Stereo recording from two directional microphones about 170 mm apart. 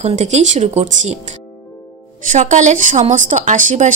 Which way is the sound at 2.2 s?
50° right (ahead or behind).